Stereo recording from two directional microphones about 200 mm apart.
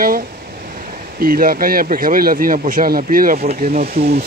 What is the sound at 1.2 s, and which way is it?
Speech, 45° right (ahead or behind).